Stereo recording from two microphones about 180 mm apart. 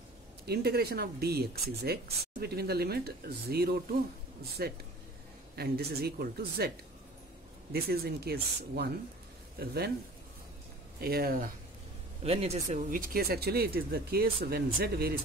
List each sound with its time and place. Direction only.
0.5 s speech: 60° right (ahead or behind)
7.7 s speech: 60° right (ahead or behind)
11.0 s speech: 55° right (ahead or behind)
12.2 s speech: 35° right (ahead or behind); by 15.1 s 60° right (ahead or behind)